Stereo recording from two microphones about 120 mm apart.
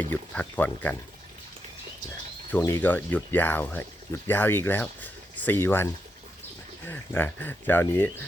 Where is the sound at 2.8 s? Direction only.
15° left (ahead or behind).